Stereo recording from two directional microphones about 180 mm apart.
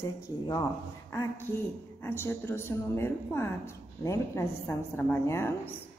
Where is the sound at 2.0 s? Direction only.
15° left (ahead or behind).